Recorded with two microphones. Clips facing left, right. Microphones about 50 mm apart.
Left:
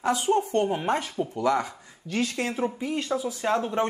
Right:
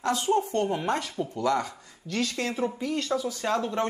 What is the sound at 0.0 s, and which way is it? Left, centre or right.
A man's voice, centre.